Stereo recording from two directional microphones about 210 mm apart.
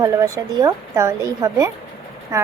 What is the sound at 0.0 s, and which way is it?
A woman's voice, 15° right (ahead or behind).